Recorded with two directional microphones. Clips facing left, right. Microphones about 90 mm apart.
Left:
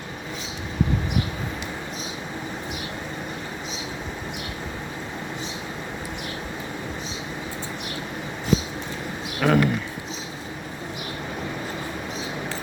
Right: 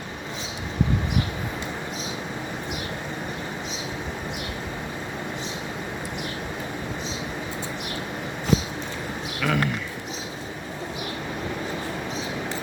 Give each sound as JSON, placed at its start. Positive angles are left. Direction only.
{"t": 9.4, "sound": "speech", "side_deg": 45}